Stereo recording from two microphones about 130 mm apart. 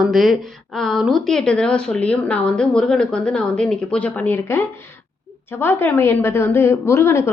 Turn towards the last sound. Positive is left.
turn(degrees=20)  # may be behind; listen again after turning